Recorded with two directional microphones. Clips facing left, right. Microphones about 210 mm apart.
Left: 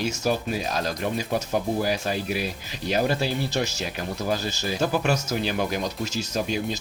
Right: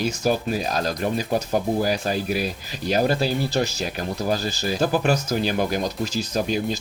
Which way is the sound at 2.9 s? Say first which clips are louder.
Right 3 dB; 40° right (ahead or behind).